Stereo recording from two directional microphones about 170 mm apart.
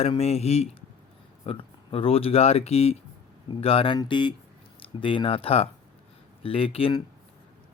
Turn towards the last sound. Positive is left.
turn(degrees=30)  # may be behind; listen again after turning